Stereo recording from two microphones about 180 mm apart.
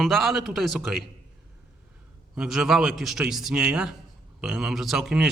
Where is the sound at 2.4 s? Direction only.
Centre (ahead or behind).